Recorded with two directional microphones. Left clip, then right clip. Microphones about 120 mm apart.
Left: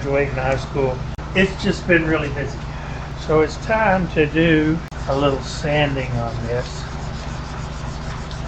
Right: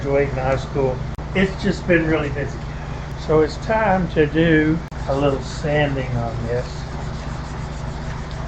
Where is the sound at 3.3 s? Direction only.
25° right (ahead or behind).